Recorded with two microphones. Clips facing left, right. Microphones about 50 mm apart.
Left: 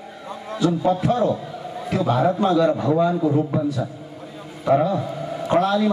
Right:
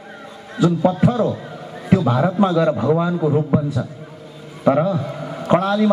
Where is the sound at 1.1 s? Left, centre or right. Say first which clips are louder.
Right 1 dB; left.